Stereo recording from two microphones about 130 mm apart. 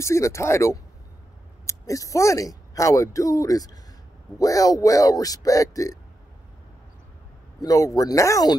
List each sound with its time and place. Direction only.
0.0 s speech: 20° left (ahead or behind)
7.6 s speech: 25° left (ahead or behind)